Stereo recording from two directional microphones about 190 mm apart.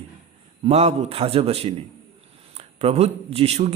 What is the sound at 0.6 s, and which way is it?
A man's voice, 35° right (ahead or behind).